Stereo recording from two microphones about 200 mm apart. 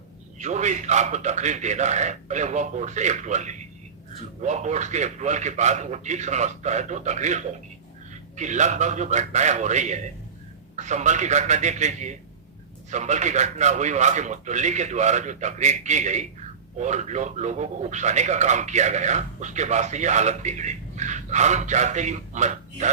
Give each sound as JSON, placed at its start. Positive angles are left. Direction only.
{"t": 0.3, "sound": "speech", "side_deg": -35}